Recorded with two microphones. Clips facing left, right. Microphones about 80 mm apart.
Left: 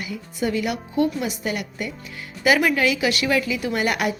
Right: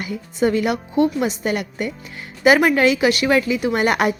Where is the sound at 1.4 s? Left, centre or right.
Right.